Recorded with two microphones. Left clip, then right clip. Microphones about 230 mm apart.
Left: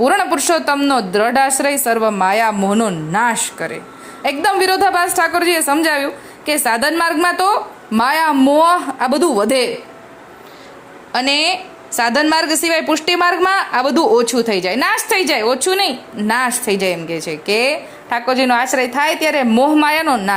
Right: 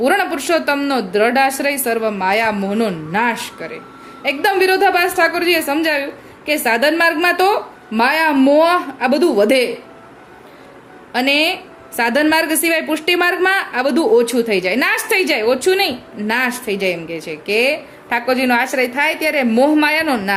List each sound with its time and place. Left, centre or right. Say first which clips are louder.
0.0 s a woman's voice: left 2 dB; centre
11.1 s a woman's voice: even; centre